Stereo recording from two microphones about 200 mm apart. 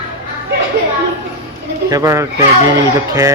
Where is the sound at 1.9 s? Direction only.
15° right (ahead or behind).